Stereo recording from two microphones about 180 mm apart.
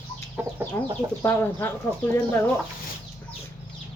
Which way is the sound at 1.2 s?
10° left (ahead or behind).